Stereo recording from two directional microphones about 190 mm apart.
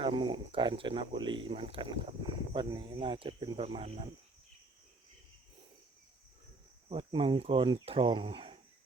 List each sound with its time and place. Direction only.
0.0 s speech: 25° right (ahead or behind)
6.8 s speech: 25° right (ahead or behind)